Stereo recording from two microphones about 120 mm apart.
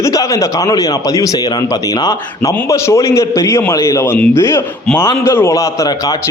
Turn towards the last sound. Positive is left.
turn(degrees=25)  # may be behind; listen again after turning